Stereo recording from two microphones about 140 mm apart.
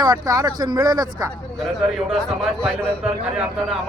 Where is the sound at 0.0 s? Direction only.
25° right (ahead or behind).